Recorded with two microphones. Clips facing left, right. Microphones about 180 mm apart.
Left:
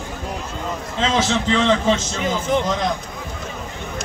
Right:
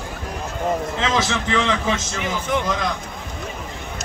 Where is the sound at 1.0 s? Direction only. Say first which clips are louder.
Left 2 dB; 25° left (ahead or behind).